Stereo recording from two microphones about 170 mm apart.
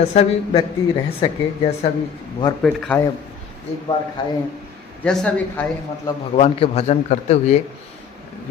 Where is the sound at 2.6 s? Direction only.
5° left (ahead or behind).